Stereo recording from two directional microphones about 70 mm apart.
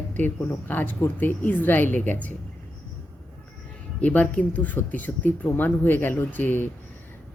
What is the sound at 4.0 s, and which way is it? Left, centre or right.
Speech, left.